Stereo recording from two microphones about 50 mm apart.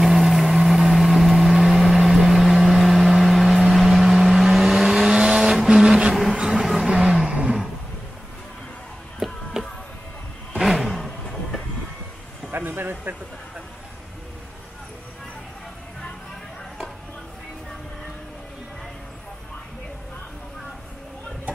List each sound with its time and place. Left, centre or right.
0.0 s vehicle: centre
6.5 s a sound: centre
6.9 s vehicle: right
9.2 s music: centre
10.6 s vehicle: centre
12.4 s a sound: right